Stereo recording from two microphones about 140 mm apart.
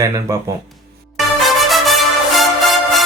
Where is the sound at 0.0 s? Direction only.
25° right (ahead or behind).